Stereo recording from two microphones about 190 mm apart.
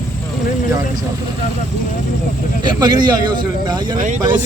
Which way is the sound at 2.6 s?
25° right (ahead or behind).